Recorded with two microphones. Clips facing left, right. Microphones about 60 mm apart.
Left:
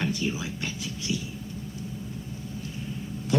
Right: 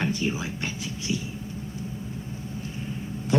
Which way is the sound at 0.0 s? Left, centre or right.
Right.